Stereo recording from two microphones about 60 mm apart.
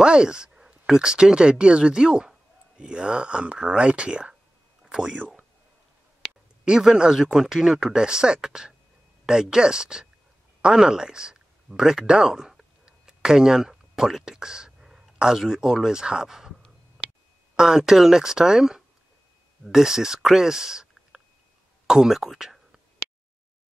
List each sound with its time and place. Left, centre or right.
0.0 s speech: centre
6.6 s speech: centre
17.6 s speech: centre